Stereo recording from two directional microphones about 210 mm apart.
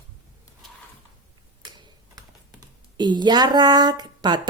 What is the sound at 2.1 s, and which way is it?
Speech, 20° right (ahead or behind).